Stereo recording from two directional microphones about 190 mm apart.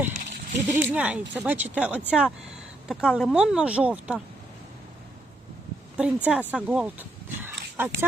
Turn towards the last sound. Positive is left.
turn(degrees=-10)  # may be behind; listen again after turning